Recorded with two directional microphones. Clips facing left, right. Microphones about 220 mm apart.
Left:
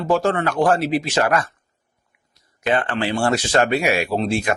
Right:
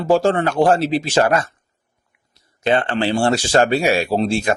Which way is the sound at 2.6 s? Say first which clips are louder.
Right 3 dB; 30° right (ahead or behind).